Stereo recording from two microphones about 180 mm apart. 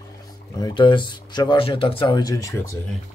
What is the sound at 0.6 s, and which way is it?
Speech, 25° left (ahead or behind).